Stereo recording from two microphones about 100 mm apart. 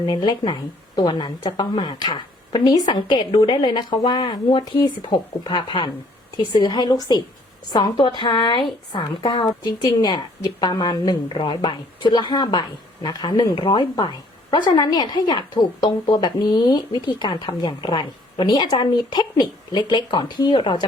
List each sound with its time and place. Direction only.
0.1 s a woman's voice: 45° left (ahead or behind)